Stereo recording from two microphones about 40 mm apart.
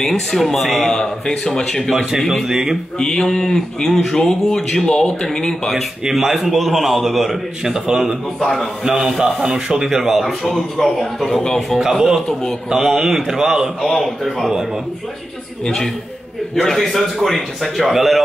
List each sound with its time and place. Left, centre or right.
0.0 s speech: centre
2.1 s a man's voice: centre
2.4 s a man's voice: centre
3.0 s speech: centre
6.0 s a man's voice: centre
9.8 s a man's voice: centre
11.8 s a man's voice: centre
12.3 s speech: centre
12.6 s a man's voice: centre
13.8 s a man's voice: centre
15.6 s a man's voice: centre